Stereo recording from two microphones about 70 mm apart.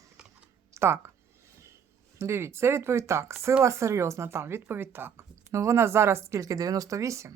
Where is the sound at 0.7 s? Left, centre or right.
Right.